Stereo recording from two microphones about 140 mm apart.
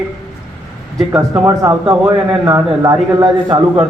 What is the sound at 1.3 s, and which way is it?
A man's voice, 20° right (ahead or behind).